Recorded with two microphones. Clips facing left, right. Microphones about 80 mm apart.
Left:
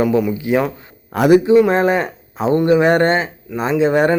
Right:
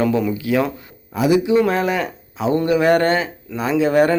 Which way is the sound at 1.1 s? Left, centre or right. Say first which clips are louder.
Left 5 dB; left.